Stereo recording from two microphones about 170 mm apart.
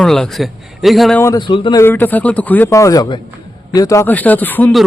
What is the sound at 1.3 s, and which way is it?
Speech, 25° left (ahead or behind).